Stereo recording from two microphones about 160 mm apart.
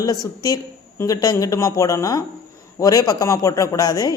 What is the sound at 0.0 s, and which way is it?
Speech, 25° left (ahead or behind).